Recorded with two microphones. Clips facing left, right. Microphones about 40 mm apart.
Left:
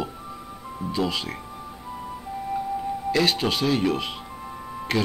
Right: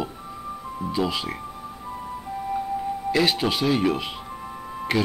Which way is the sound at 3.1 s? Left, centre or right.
Centre.